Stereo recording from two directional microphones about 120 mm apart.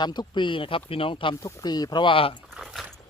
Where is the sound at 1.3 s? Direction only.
25° left (ahead or behind); by 2.4 s 50° left (ahead or behind).